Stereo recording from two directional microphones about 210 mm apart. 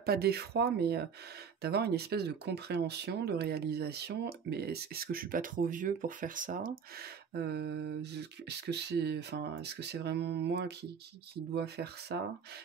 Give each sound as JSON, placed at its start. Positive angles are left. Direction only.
{"t": 0.0, "sound": "speech", "side_deg": -50}